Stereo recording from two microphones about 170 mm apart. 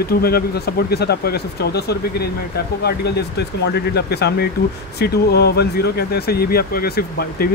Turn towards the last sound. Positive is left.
turn(degrees=65)  # may be behind; listen again after turning